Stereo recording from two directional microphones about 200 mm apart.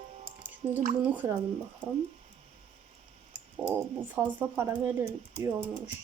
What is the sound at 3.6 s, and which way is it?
Speech, 5° right (ahead or behind).